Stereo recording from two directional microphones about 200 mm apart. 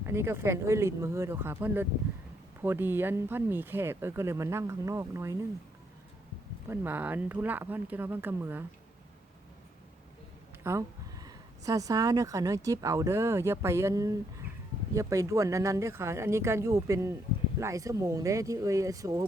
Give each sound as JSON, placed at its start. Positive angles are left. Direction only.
{"t": 0.0, "sound": "speech", "side_deg": -10}
{"t": 6.7, "sound": "speech", "side_deg": -10}
{"t": 10.6, "sound": "speech", "side_deg": -15}